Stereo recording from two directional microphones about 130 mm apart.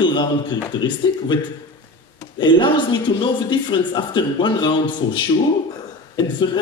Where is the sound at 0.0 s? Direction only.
35° left (ahead or behind).